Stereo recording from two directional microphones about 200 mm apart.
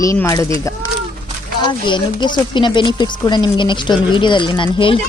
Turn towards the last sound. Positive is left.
turn(degrees=25)  # may be behind; listen again after turning